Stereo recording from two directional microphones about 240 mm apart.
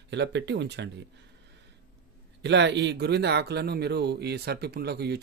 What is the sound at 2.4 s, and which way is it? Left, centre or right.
Speech, right.